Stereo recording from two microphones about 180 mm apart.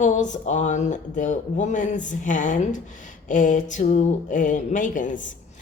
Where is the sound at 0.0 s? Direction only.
45° left (ahead or behind).